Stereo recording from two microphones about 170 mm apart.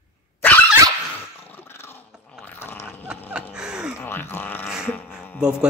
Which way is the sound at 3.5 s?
5° right (ahead or behind).